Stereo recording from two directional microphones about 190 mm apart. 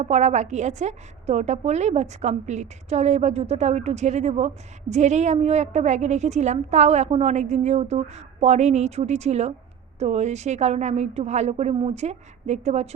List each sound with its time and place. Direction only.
0.0 s a woman's voice: 35° right (ahead or behind)